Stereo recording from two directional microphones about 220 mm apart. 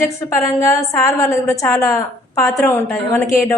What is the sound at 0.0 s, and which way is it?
A woman's voice, 15° left (ahead or behind).